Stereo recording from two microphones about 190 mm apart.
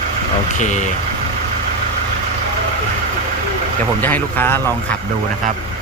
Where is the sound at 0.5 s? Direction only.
40° left (ahead or behind).